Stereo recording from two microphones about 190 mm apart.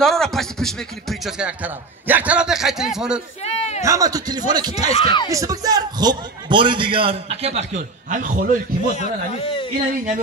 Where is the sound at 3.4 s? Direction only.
35° left (ahead or behind).